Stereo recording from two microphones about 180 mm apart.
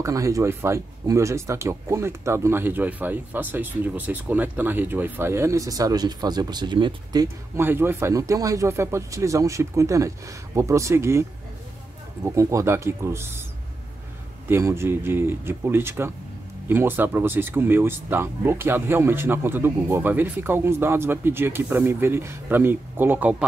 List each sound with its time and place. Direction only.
0.0 s speech: 15° right (ahead or behind)
12.4 s speech: 15° right (ahead or behind)
14.5 s speech: 15° right (ahead or behind)